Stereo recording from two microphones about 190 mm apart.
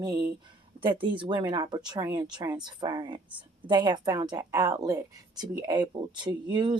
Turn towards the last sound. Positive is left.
turn(degrees=-25)  # may be behind; listen again after turning